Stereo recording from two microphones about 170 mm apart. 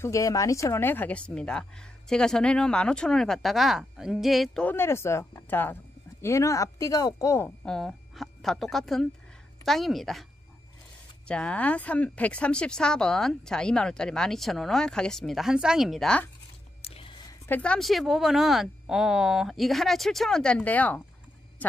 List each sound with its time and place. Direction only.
0.0 s a woman's voice: 20° left (ahead or behind)
7.6 s a woman's voice: centre (ahead or behind)
11.2 s speech: 5° left (ahead or behind)
16.8 s a sound: 35° left (ahead or behind)
17.5 s speech: 5° left (ahead or behind)